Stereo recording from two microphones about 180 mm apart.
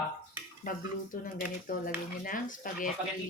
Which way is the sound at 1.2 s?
50° left (ahead or behind).